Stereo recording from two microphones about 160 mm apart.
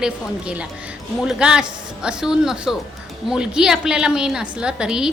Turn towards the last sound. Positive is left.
turn(degrees=-5)  # may be behind; listen again after turning